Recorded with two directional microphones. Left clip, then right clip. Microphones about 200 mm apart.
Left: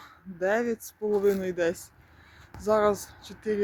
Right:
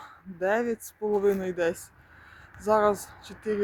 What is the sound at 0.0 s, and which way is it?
Speech, 5° right (ahead or behind).